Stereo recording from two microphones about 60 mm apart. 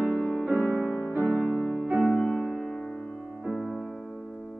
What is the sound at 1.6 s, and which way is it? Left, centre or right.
Music, centre.